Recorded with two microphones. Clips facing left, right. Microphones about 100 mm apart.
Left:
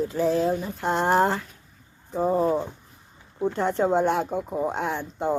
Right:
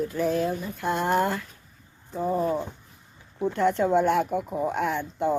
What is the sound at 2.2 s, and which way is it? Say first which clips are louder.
Speech: left 3 dB; 35° left (ahead or behind).